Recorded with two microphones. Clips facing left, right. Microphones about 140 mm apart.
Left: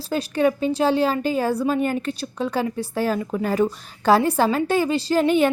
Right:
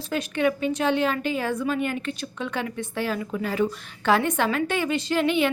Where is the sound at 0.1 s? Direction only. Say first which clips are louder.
Left 4 dB; 35° left (ahead or behind).